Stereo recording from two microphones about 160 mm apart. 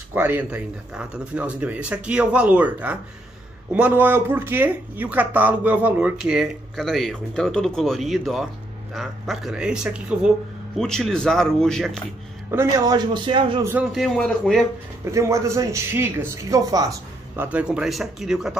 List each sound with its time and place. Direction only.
0.1 s speech: 10° right (ahead or behind)
12.4 s a man's voice: 20° right (ahead or behind)
13.9 s speech: centre (ahead or behind)
15.0 s a man's voice: 20° right (ahead or behind)
17.4 s speech: 10° right (ahead or behind)